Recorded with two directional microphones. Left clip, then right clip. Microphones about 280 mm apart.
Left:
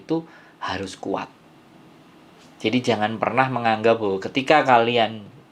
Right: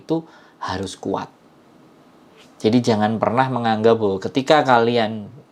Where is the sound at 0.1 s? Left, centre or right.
Right.